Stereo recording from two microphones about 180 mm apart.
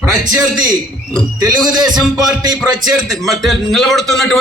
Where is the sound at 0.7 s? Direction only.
20° right (ahead or behind).